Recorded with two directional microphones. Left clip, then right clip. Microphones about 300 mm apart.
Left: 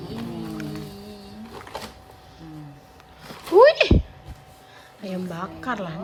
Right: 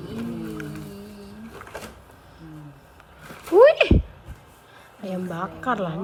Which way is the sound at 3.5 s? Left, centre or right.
Centre.